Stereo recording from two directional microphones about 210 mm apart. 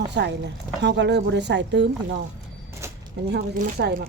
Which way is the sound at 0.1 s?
55° right (ahead or behind).